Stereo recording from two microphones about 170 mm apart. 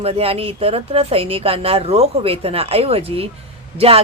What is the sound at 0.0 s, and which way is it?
Speech, 35° right (ahead or behind).